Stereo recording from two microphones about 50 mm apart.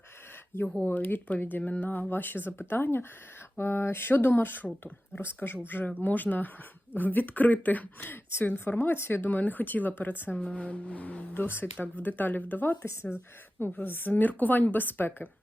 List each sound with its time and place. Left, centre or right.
0.9 s speech: left
3.6 s a sound: left
4.6 s speech: left
5.2 s a sound: left
5.6 s speech: left
8.0 s speech: left
8.4 s speech: left
10.4 s speech: left
11.3 s speech: left
12.8 s speech: left
13.7 s speech: left